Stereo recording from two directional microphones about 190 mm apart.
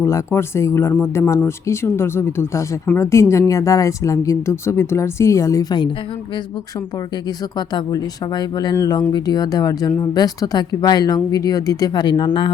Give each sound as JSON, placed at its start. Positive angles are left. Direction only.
{"t": 0.0, "sound": "speech", "side_deg": 15}
{"t": 7.7, "sound": "speech", "side_deg": 20}